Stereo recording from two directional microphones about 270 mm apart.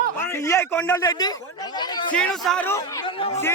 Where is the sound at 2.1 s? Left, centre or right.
Centre.